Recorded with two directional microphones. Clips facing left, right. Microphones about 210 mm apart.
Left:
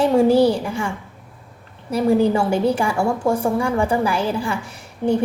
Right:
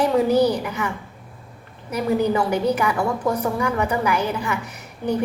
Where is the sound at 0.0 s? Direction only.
30° left (ahead or behind).